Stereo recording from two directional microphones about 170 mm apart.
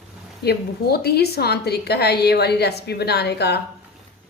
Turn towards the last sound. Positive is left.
turn(degrees=75)  # may be behind; listen again after turning